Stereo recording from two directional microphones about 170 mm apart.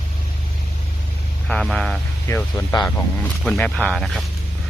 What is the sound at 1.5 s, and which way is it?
Speech, 5° left (ahead or behind).